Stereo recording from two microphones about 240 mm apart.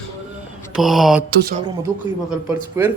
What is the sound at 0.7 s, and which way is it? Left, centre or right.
Mantra, centre.